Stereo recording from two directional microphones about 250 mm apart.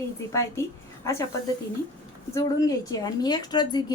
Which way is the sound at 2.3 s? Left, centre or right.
Centre.